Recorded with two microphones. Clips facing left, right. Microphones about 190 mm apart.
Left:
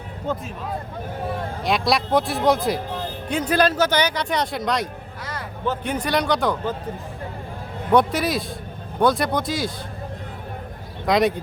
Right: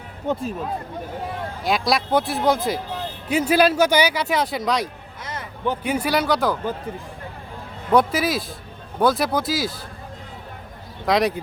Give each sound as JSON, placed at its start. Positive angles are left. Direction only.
{"t": 0.3, "sound": "speech", "side_deg": -15}
{"t": 1.6, "sound": "speech", "side_deg": 0}
{"t": 5.2, "sound": "a sound", "side_deg": -20}
{"t": 5.8, "sound": "speech", "side_deg": -5}
{"t": 7.9, "sound": "speech", "side_deg": 0}
{"t": 11.0, "sound": "speech", "side_deg": 0}